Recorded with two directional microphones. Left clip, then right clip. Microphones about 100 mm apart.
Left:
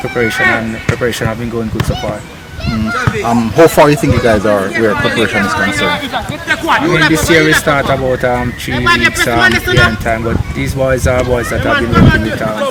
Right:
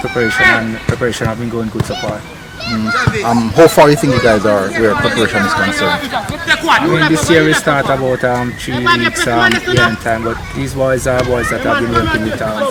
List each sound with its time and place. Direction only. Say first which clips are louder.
0.3 s a man's voice: right 3 dB; 45° right (ahead or behind)
3.2 s speech: even; 15° right (ahead or behind)
6.5 s a man's voice: right 1 dB; 50° right (ahead or behind)
6.8 s speech: left 2 dB; 5° left (ahead or behind)